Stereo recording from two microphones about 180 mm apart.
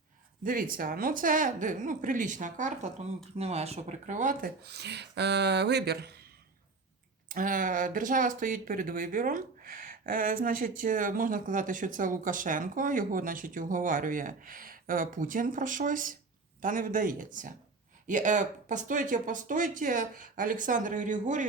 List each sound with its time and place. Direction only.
0.4 s speech: 50° right (ahead or behind)
7.3 s speech: 50° right (ahead or behind)